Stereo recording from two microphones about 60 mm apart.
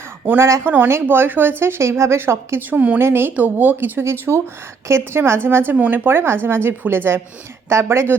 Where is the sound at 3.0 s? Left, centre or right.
Right.